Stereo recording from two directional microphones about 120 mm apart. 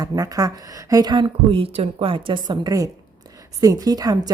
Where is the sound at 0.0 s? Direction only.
30° right (ahead or behind).